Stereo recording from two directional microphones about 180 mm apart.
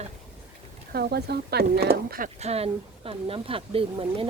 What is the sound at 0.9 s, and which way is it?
Speech, 65° right (ahead or behind).